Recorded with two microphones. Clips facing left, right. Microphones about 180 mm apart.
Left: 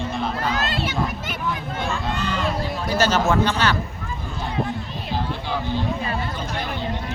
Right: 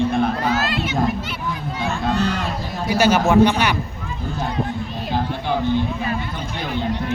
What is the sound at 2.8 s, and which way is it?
Speech, 10° right (ahead or behind).